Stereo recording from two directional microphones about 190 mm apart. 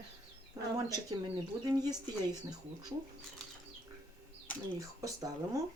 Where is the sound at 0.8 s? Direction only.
20° right (ahead or behind).